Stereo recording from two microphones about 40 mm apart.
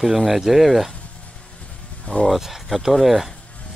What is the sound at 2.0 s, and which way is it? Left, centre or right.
Speech, left.